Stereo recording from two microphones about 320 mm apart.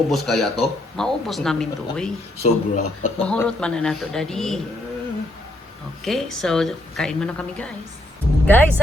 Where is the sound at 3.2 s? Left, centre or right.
Centre.